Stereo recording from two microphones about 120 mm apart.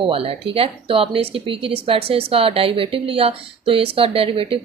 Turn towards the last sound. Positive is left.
turn(degrees=-50)  # may be behind; listen again after turning